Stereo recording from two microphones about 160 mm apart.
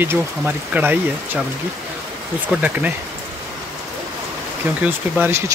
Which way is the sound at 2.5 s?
10° right (ahead or behind).